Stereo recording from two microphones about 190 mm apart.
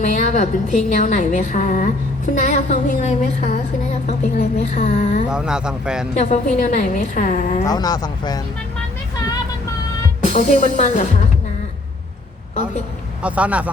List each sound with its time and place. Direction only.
0.0 s a woman's voice: 40° left (ahead or behind)
5.3 s speech: 5° right (ahead or behind)
6.1 s a woman's voice: 40° left (ahead or behind)
7.6 s speech: 20° left (ahead or behind)
10.3 s a woman's voice: 40° left (ahead or behind)
13.2 s speech: 5° right (ahead or behind)